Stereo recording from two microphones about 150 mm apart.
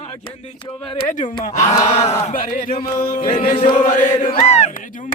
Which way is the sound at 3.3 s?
55° left (ahead or behind).